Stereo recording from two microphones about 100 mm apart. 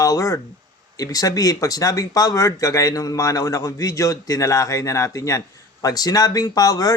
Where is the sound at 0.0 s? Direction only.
35° left (ahead or behind).